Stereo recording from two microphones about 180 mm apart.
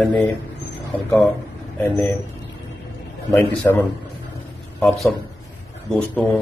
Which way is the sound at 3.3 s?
10° left (ahead or behind).